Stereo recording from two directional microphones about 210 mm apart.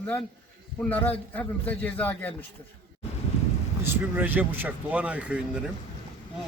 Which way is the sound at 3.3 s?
30° left (ahead or behind).